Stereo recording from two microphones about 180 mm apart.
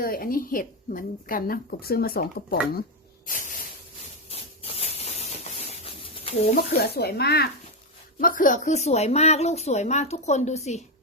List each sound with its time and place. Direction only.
0.0 s a woman's voice: 55° left (ahead or behind)
4.3 s spray: 35° left (ahead or behind)
6.6 s speech: 60° left (ahead or behind)
8.2 s speech: 50° left (ahead or behind)